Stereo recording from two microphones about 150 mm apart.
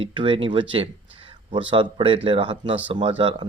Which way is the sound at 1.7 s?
35° right (ahead or behind).